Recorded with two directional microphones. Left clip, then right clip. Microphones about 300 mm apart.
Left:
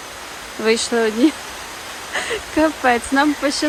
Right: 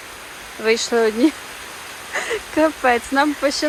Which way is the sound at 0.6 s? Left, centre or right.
Centre.